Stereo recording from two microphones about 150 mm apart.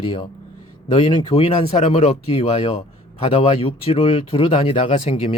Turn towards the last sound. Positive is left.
turn(degrees=40)  # may be behind; listen again after turning